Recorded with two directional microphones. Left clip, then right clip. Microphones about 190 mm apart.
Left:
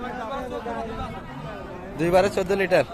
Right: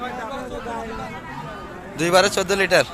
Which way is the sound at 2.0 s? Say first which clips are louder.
Right 3 dB; centre (ahead or behind).